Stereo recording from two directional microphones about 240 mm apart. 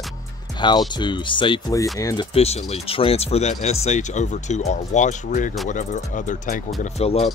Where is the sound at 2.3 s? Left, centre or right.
Left.